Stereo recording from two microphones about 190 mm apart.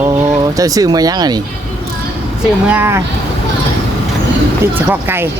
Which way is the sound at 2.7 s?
10° right (ahead or behind).